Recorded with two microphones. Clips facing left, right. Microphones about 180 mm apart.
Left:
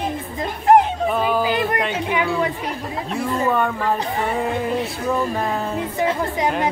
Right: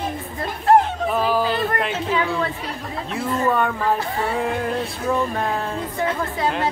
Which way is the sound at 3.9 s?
20° left (ahead or behind).